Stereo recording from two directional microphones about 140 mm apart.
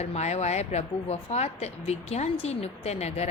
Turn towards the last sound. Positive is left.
turn(degrees=50)  # may be behind; listen again after turning